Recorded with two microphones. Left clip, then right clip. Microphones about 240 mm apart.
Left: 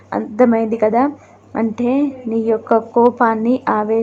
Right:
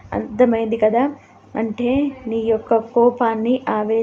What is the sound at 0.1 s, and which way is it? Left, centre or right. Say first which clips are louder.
A woman's voice: left 2 dB; centre.